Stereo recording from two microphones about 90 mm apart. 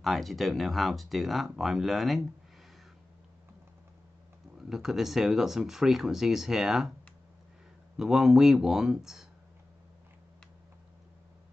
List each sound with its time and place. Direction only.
0.0 s speech: centre (ahead or behind)
4.6 s speech: 5° right (ahead or behind)
8.0 s speech: 5° right (ahead or behind)